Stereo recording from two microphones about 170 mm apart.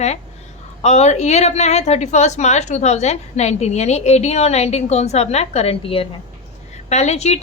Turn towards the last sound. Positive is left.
turn(degrees=40)  # may be behind; listen again after turning